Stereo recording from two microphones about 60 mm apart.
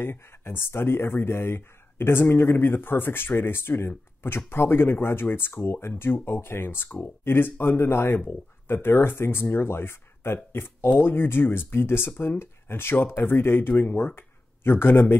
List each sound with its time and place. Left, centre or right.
0.0 s speech: left